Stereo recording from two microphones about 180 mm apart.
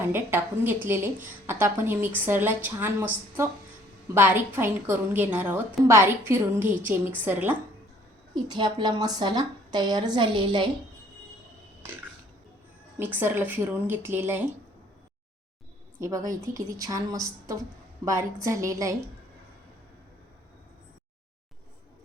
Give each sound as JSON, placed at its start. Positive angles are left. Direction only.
{"t": 0.0, "sound": "a woman's voice", "side_deg": -15}
{"t": 8.4, "sound": "a woman's voice", "side_deg": -25}
{"t": 13.0, "sound": "a woman's voice", "side_deg": -10}
{"t": 16.0, "sound": "a woman's voice", "side_deg": -15}